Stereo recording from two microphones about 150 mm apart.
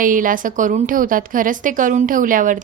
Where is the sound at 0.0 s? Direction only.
65° right (ahead or behind).